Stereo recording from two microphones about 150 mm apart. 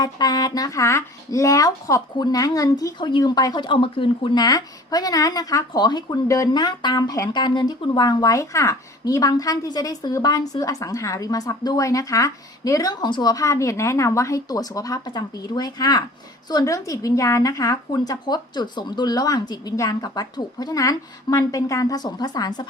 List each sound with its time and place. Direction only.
0.0 s speech: 25° left (ahead or behind)